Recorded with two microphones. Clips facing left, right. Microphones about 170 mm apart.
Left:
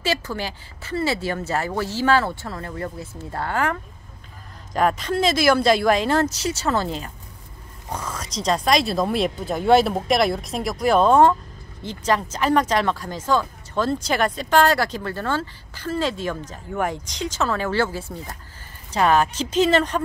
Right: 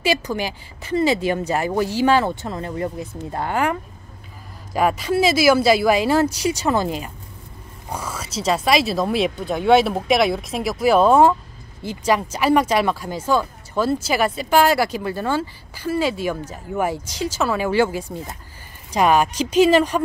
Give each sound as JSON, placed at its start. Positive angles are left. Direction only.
{"t": 0.0, "sound": "speech", "side_deg": -15}